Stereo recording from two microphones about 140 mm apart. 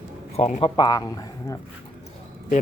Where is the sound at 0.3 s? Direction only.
50° left (ahead or behind).